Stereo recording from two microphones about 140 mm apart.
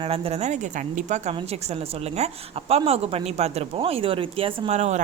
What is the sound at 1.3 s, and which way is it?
Speech, 45° right (ahead or behind).